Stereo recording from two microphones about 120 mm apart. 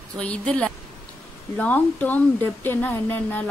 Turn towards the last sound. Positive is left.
turn(degrees=15)  # may be behind; listen again after turning